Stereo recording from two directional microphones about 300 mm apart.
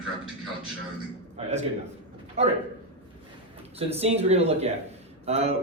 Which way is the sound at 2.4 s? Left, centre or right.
Right.